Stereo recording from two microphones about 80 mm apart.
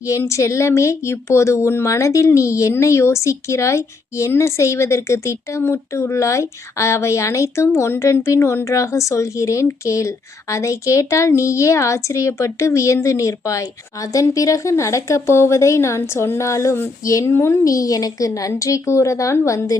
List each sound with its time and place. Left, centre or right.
0.0 s a woman's voice: left